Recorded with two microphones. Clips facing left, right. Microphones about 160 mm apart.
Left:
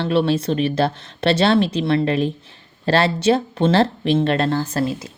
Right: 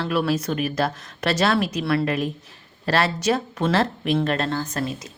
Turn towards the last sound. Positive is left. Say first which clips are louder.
# left 5 dB
turn(degrees=30)  # may be behind; listen again after turning